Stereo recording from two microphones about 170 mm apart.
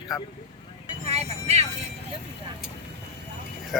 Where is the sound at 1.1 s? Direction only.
40° right (ahead or behind).